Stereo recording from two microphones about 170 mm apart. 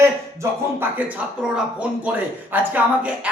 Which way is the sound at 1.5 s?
5° right (ahead or behind).